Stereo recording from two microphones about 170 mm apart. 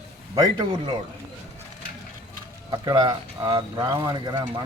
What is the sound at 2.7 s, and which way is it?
Speech, 25° right (ahead or behind).